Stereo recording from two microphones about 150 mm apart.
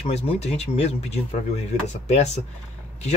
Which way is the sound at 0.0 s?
45° left (ahead or behind).